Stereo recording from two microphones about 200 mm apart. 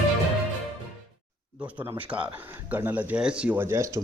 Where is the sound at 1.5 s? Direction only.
5° right (ahead or behind).